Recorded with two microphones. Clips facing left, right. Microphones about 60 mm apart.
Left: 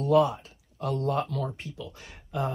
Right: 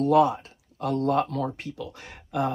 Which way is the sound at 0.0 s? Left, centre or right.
Right.